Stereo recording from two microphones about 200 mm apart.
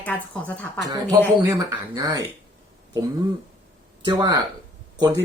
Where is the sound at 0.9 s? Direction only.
20° right (ahead or behind).